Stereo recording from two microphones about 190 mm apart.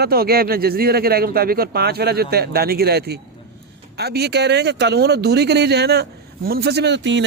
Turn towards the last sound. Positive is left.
turn(degrees=-70)  # may be behind; listen again after turning